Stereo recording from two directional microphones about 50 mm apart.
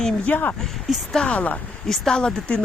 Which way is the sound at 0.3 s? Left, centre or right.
Left.